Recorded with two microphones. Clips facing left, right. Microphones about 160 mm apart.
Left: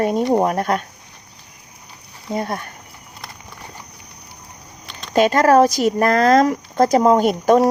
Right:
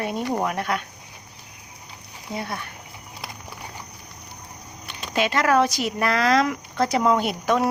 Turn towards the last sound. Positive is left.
turn(degrees=45)  # may be behind; listen again after turning